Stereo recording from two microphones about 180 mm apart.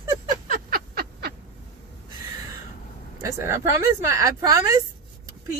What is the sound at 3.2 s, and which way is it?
Speech, 15° right (ahead or behind).